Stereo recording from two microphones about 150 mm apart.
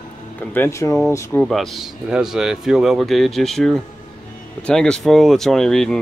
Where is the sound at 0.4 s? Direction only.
15° left (ahead or behind).